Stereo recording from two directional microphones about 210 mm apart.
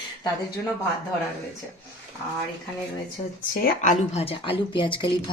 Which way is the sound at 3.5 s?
40° left (ahead or behind).